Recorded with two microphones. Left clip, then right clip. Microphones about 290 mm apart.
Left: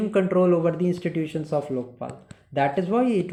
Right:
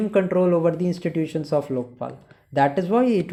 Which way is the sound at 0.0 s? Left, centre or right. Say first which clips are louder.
Right 1 dB; centre.